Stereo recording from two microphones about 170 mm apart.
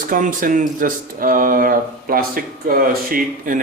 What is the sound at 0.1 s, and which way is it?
Speech, 50° right (ahead or behind).